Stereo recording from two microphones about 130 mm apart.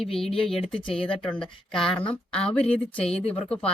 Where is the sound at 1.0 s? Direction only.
5° left (ahead or behind).